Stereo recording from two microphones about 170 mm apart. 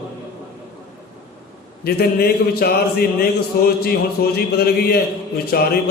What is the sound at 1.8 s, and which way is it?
A man's voice, 65° left (ahead or behind).